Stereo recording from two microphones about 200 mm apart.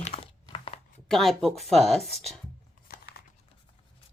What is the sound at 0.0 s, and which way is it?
Crumpling, 30° left (ahead or behind).